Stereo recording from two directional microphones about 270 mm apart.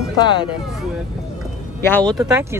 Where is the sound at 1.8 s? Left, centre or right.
Centre.